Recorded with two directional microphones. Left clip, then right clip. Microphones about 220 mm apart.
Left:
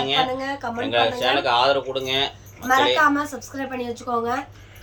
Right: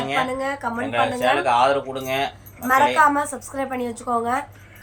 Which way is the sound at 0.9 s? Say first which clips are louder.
Even; 15° left (ahead or behind).